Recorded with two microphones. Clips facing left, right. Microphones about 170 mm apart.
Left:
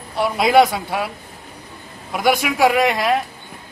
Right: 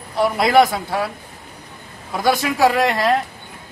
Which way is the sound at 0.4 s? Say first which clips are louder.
Left 1 dB; 20° left (ahead or behind).